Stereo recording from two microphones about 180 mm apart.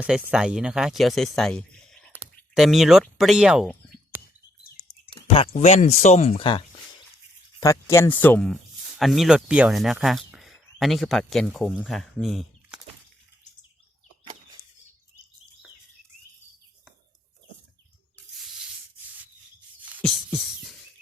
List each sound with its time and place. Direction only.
0.0 s speech: 5° right (ahead or behind)
4.1 s chirp: 10° right (ahead or behind)
5.3 s speech: 35° left (ahead or behind)
7.6 s speech: 15° left (ahead or behind); by 12.8 s centre (ahead or behind)
20.0 s a sound: centre (ahead or behind)